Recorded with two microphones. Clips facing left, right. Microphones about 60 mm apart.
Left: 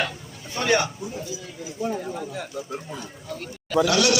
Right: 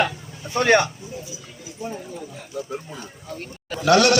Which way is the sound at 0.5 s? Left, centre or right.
Right.